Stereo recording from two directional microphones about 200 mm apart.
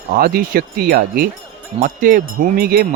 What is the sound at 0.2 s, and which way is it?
Speech, 45° right (ahead or behind).